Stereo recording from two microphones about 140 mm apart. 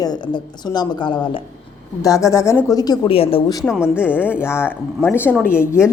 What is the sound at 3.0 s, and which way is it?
Speech, 40° left (ahead or behind).